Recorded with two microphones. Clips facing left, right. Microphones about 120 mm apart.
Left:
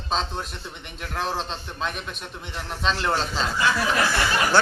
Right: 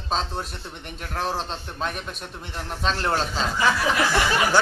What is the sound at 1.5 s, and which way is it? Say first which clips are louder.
Speech: right 1 dB; 45° right (ahead or behind).